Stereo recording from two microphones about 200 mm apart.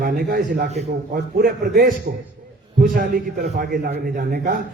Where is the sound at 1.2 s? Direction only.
50° right (ahead or behind).